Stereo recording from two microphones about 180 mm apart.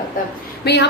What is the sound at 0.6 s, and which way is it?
Speech, 70° left (ahead or behind).